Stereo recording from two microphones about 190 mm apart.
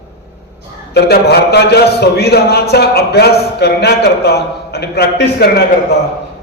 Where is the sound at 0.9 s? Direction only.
60° left (ahead or behind).